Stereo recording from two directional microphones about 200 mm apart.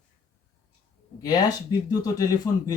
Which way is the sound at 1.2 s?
20° left (ahead or behind).